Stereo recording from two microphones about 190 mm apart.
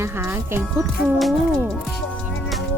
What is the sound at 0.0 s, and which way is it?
Speech, 10° right (ahead or behind).